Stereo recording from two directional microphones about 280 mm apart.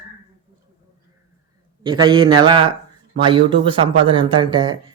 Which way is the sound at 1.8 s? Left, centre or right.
Centre.